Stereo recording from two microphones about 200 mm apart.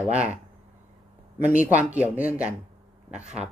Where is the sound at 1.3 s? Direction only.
5° right (ahead or behind).